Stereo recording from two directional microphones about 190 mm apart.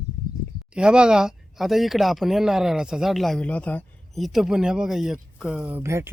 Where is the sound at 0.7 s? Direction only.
5° right (ahead or behind).